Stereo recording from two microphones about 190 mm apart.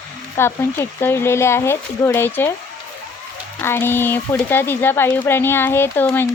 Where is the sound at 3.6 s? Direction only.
10° left (ahead or behind).